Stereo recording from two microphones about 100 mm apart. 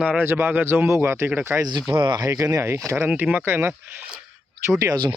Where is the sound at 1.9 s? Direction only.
50° right (ahead or behind).